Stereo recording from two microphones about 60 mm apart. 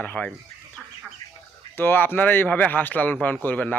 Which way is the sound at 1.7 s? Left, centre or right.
Left.